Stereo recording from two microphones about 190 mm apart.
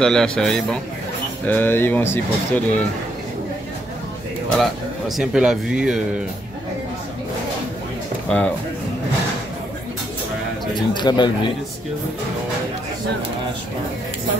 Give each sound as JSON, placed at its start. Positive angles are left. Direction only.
{"t": 0.0, "sound": "speech", "side_deg": 5}
{"t": 4.6, "sound": "speech", "side_deg": 0}
{"t": 8.3, "sound": "speech", "side_deg": 5}
{"t": 10.7, "sound": "speech", "side_deg": 25}